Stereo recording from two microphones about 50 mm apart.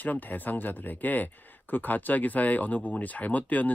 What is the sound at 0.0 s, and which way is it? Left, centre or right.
Speech, left.